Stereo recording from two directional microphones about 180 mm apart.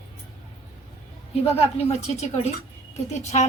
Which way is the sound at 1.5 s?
35° left (ahead or behind).